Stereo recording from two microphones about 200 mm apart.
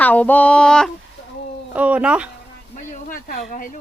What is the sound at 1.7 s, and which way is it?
Speech, 5° right (ahead or behind).